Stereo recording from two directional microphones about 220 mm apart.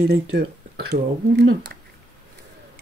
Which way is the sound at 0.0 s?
45° right (ahead or behind).